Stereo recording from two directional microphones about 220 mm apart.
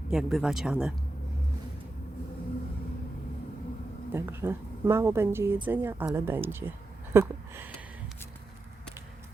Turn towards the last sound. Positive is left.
turn(degrees=-10)  # may be behind; listen again after turning